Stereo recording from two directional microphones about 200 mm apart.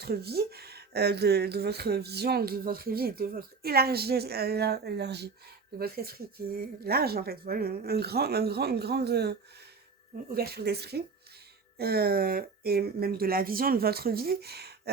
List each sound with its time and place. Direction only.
0.0 s speech: 50° right (ahead or behind)